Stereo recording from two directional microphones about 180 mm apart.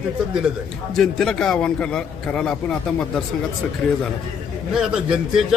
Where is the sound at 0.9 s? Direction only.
Centre (ahead or behind).